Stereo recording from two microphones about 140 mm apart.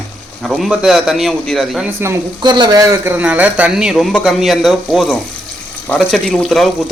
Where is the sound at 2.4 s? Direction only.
30° right (ahead or behind).